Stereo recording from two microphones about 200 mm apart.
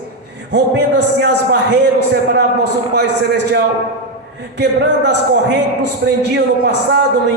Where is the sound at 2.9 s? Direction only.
60° right (ahead or behind).